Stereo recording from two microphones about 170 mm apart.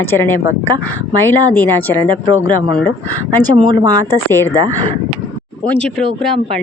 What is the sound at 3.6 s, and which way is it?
Speech, 30° right (ahead or behind).